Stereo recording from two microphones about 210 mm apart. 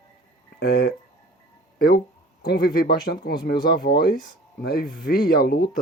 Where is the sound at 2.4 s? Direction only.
50° left (ahead or behind).